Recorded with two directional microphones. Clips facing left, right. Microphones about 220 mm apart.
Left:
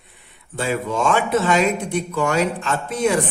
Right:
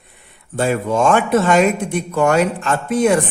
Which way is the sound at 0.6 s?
50° right (ahead or behind).